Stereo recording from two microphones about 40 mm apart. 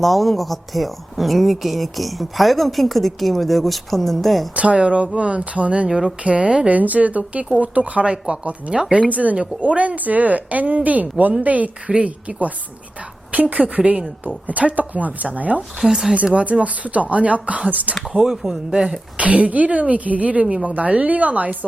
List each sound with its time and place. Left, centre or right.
0.0 s speech: centre
4.5 s speech: right
5.9 s speech: centre
6.2 s a woman's voice: right
6.7 s speech: right
13.3 s speech: right
15.9 s speech: centre
16.1 s speech: right
18.2 s speech: centre
19.1 s speech: right